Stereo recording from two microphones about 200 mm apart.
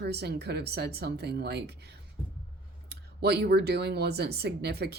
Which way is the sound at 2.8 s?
55° right (ahead or behind).